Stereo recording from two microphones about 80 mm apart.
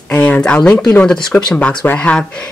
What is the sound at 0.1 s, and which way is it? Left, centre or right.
Speech, centre.